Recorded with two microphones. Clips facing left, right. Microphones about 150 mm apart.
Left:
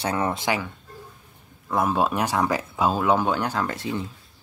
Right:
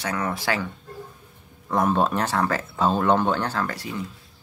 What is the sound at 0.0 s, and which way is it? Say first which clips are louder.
Speech: left 2 dB; 25° left (ahead or behind).